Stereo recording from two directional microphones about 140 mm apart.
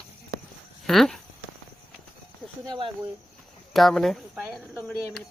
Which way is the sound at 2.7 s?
40° right (ahead or behind).